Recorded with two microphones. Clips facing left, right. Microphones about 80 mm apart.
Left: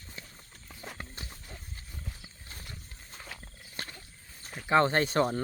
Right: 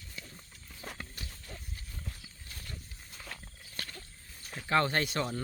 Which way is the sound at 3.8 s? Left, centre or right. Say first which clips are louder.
Left 2 dB; left.